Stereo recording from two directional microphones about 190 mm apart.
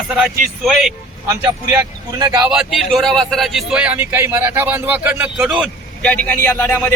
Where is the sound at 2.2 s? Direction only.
20° right (ahead or behind).